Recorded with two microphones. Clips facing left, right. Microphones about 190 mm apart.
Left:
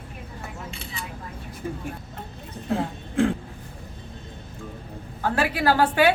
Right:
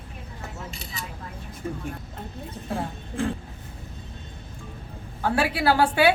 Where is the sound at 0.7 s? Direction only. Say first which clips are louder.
Left 1 dB; 40° right (ahead or behind).